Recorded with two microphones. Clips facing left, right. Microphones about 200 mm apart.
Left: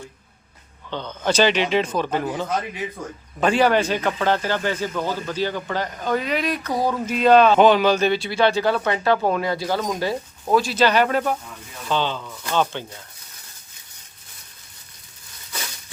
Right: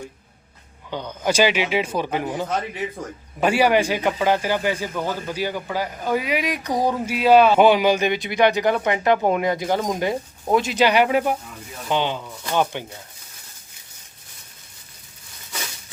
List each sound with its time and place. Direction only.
0.9 s speech: 10° right (ahead or behind)